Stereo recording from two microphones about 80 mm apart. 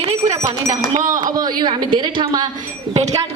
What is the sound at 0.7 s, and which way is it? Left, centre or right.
Speech, right.